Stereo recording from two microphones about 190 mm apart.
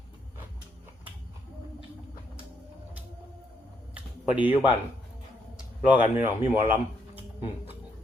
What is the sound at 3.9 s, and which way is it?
Typing, 10° right (ahead or behind).